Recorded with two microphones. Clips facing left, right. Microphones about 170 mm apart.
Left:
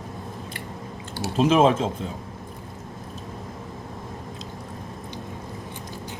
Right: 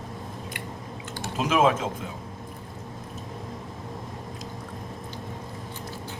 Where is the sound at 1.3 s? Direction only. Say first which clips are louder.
Left 4 dB; 30° left (ahead or behind).